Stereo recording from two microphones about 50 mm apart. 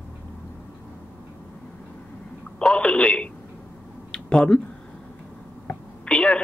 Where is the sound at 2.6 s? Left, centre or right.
Left.